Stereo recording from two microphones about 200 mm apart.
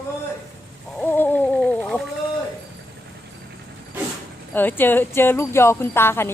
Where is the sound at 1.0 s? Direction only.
10° left (ahead or behind).